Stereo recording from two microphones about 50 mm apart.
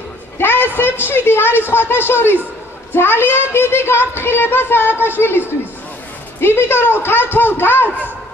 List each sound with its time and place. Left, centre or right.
0.4 s a sound: left
0.7 s speech: left
6.4 s speech: left